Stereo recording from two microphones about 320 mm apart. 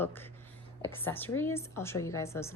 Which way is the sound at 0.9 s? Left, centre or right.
Centre.